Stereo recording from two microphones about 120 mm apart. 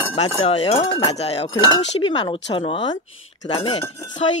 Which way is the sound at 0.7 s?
40° left (ahead or behind).